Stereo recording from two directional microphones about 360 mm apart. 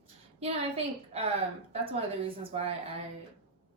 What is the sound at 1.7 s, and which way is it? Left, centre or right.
Speech, centre.